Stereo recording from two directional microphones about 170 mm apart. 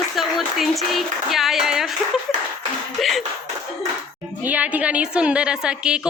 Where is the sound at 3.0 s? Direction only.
Centre (ahead or behind).